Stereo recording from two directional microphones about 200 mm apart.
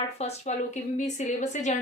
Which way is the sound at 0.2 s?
35° left (ahead or behind).